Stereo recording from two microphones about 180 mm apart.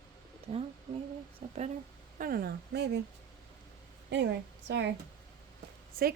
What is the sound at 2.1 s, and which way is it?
Speech, 55° right (ahead or behind).